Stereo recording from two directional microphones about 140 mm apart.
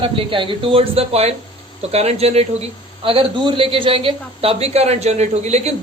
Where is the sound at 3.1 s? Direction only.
35° right (ahead or behind).